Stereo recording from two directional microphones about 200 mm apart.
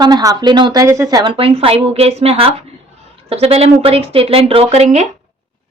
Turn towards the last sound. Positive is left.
turn(degrees=-35)  # may be behind; listen again after turning